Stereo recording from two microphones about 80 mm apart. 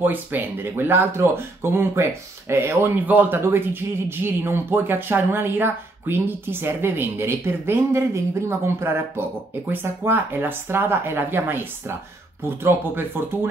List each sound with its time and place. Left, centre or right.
0.0 s speech: right